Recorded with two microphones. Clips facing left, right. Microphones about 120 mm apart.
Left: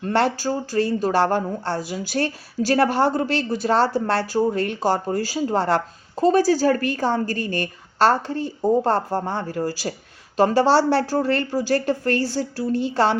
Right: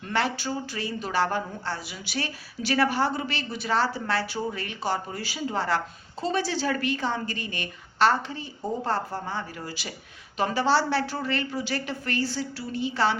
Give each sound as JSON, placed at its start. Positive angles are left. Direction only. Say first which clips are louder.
{"t": 0.3, "sound": "speech", "louder": "left 9 dB", "side_deg": 40}